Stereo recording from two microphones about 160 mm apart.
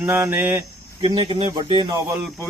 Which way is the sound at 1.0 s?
30° right (ahead or behind).